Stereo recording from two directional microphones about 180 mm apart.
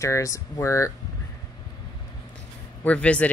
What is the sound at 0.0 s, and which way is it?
Speech, 15° left (ahead or behind).